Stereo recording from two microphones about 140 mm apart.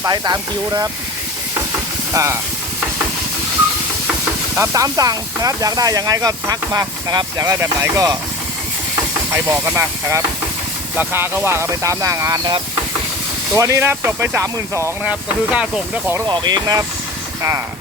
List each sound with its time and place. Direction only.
0.0 s speech: 30° right (ahead or behind)
2.1 s speech: 20° right (ahead or behind)
4.5 s speech: 20° right (ahead or behind)
9.3 s speech: 20° right (ahead or behind)
15.5 s speech: 10° right (ahead or behind)
16.1 s speech: 30° right (ahead or behind)